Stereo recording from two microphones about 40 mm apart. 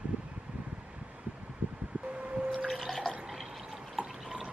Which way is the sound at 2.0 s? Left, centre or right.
Right.